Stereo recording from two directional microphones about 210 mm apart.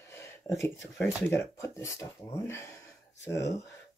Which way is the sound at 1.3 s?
15° left (ahead or behind).